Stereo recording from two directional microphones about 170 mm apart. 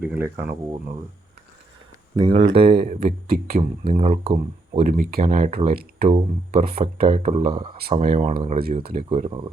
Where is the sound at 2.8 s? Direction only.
50° right (ahead or behind).